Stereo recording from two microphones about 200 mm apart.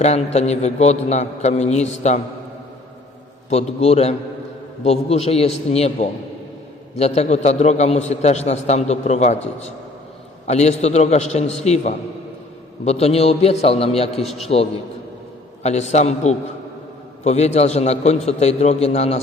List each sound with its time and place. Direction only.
0.3 s a man's voice: 35° left (ahead or behind)
3.5 s a man's voice: 30° left (ahead or behind)